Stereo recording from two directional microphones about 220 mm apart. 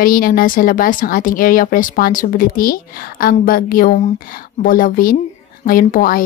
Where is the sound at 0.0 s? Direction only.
40° left (ahead or behind).